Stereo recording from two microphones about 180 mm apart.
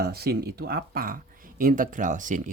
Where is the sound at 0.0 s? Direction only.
60° right (ahead or behind).